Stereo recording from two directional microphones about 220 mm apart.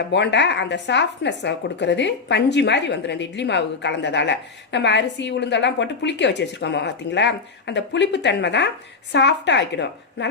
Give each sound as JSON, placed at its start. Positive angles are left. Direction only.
{"t": 0.1, "sound": "speech", "side_deg": 55}